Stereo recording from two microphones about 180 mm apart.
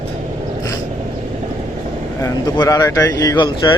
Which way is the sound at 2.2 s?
20° left (ahead or behind).